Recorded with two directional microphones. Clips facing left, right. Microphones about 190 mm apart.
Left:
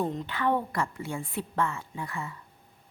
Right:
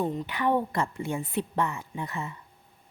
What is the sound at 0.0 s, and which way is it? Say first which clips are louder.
Speech: right 1 dB; 5° right (ahead or behind).